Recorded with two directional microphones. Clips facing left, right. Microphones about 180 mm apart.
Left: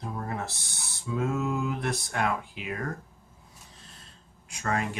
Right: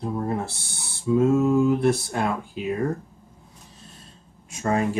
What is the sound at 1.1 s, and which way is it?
Speech, 30° right (ahead or behind).